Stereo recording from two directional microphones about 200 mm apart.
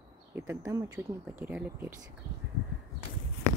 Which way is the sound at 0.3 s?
10° right (ahead or behind).